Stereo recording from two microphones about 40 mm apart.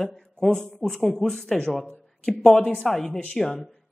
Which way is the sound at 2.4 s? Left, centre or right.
Centre.